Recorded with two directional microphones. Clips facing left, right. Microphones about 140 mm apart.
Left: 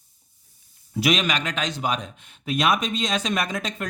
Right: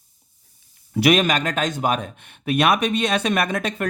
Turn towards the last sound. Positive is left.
turn(degrees=-60)  # may be behind; listen again after turning